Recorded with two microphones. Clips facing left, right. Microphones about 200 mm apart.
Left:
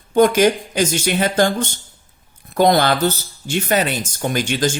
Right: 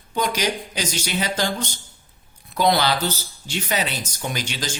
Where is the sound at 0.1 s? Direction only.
50° left (ahead or behind).